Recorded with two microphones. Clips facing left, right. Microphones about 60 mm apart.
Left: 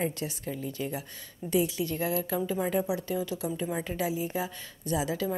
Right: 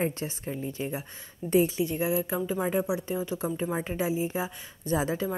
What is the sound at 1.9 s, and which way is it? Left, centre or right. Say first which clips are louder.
A woman's voice: right 2 dB; centre.